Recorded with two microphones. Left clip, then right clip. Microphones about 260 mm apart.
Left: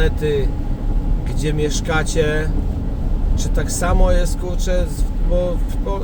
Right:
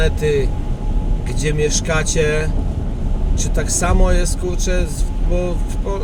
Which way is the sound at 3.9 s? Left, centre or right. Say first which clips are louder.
Left 4 dB; centre.